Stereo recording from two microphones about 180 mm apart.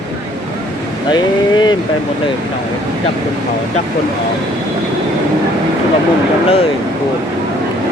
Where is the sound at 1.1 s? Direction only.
25° left (ahead or behind).